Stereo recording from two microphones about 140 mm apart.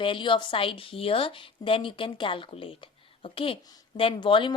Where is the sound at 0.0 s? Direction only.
35° left (ahead or behind).